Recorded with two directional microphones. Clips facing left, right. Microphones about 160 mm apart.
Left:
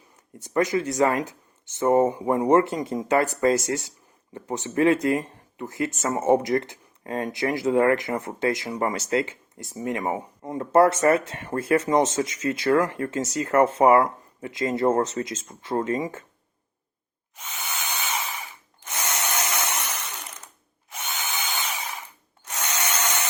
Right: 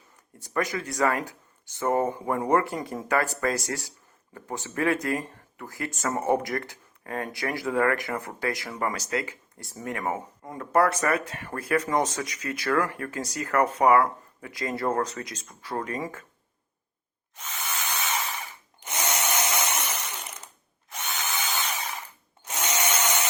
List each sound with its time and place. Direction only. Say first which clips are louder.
0.3 s speech: left 6 dB; 20° left (ahead or behind)
17.3 s spray: even; centre (ahead or behind)
18.8 s tools: right 1 dB; 20° right (ahead or behind)
20.9 s drill: even; centre (ahead or behind)